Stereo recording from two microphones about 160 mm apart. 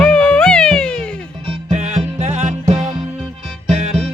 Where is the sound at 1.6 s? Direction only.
45° right (ahead or behind).